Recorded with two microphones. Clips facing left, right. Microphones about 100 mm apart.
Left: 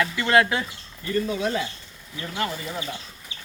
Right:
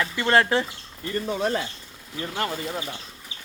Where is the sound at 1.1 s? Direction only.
40° right (ahead or behind).